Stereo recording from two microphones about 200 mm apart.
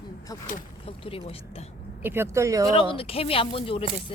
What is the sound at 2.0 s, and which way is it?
Speech, 10° right (ahead or behind).